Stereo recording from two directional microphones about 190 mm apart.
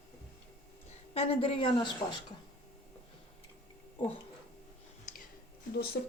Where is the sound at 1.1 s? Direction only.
30° left (ahead or behind).